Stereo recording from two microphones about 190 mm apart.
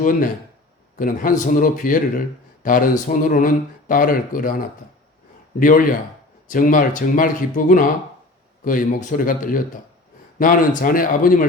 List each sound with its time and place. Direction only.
0.0 s speech: 45° left (ahead or behind)
5.5 s speech: 45° left (ahead or behind)